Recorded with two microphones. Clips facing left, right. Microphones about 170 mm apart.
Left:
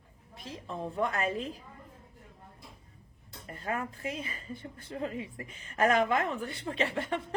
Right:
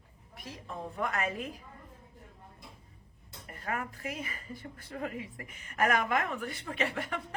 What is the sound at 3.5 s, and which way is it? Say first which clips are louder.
A woman's voice: left 2 dB; 30° left (ahead or behind).